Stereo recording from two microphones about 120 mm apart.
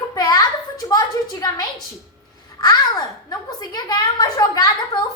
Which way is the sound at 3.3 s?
35° left (ahead or behind).